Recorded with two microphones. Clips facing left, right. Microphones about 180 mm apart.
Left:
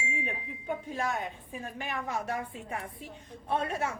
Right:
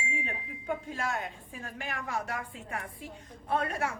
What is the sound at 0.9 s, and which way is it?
Speech, 20° left (ahead or behind).